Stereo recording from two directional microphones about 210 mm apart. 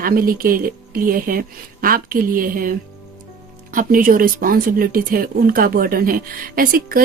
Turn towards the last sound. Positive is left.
turn(degrees=-45)  # may be behind; listen again after turning